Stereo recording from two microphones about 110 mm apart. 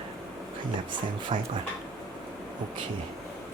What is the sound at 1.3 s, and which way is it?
Speech, 50° right (ahead or behind).